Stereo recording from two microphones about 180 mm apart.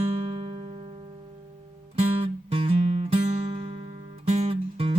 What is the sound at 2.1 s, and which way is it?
Music, 30° right (ahead or behind).